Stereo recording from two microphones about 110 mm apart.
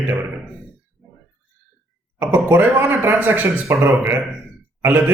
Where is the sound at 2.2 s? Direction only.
20° right (ahead or behind).